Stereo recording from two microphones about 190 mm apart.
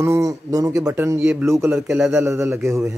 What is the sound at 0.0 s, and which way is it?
A man's voice, 15° right (ahead or behind).